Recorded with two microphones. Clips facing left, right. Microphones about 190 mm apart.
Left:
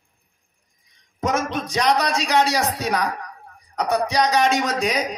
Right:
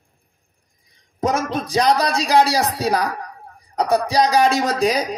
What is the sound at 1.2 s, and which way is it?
Speech, 35° right (ahead or behind).